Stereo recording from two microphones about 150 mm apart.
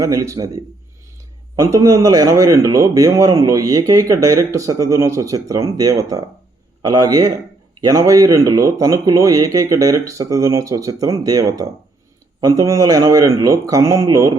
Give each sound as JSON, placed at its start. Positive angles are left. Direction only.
{"t": 0.0, "sound": "a man's voice", "side_deg": -20}